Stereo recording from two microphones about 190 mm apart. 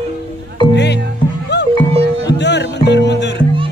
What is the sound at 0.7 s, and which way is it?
Music, 65° left (ahead or behind).